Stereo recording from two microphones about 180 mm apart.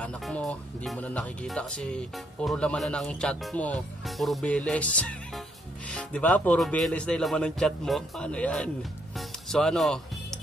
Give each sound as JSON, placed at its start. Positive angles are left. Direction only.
{"t": 0.0, "sound": "speech", "side_deg": 5}
{"t": 9.1, "sound": "music", "side_deg": 5}